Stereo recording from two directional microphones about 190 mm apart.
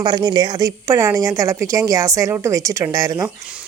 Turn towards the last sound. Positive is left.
turn(degrees=-20)  # may be behind; listen again after turning